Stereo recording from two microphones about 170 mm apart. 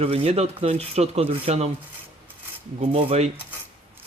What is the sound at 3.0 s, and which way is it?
Rub, 35° right (ahead or behind).